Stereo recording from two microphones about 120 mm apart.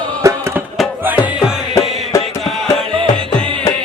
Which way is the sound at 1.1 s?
40° left (ahead or behind).